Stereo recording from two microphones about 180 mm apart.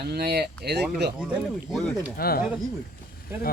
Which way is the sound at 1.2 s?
5° right (ahead or behind).